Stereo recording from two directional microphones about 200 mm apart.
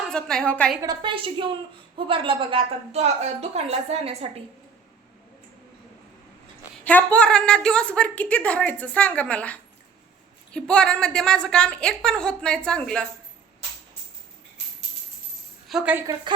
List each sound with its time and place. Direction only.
0.1 s a woman's voice: 5° left (ahead or behind)
0.8 s a woman's voice: 20° right (ahead or behind)
6.8 s a woman's voice: 5° left (ahead or behind)
15.6 s a woman's voice: 5° right (ahead or behind)